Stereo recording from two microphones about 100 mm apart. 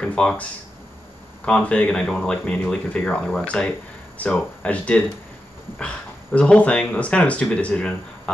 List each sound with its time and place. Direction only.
0.0 s speech: 10° left (ahead or behind)
6.3 s speech: 15° left (ahead or behind)